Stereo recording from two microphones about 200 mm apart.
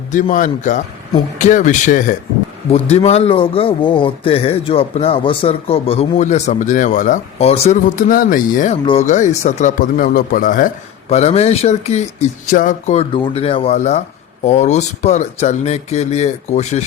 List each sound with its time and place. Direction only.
0.1 s speech: 40° left (ahead or behind)
11.1 s speech: 30° left (ahead or behind)